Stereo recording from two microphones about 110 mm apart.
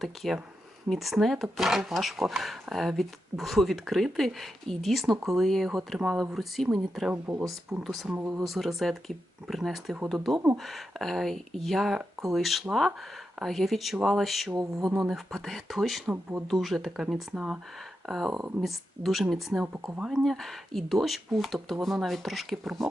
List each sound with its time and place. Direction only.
0.0 s speech: centre (ahead or behind)
8.1 s speech: 20° right (ahead or behind)
8.4 s speech: centre (ahead or behind)
14.5 s a sound: 35° right (ahead or behind)
15.1 s speech: centre (ahead or behind)